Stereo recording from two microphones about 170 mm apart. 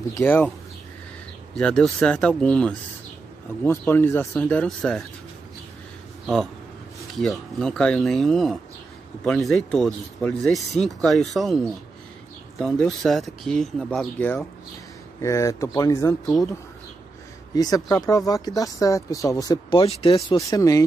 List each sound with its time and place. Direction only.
0.1 s speech: 10° left (ahead or behind)
1.5 s speech: 5° left (ahead or behind)
6.2 s speech: centre (ahead or behind); by 16.3 s 15° left (ahead or behind)
17.6 s speech: 20° left (ahead or behind)
20.2 s speech: 20° left (ahead or behind)